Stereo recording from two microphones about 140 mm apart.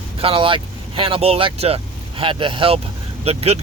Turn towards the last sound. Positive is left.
turn(degrees=-45)  # may be behind; listen again after turning